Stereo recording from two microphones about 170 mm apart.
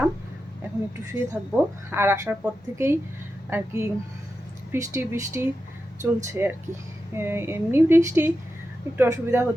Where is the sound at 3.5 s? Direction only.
15° right (ahead or behind).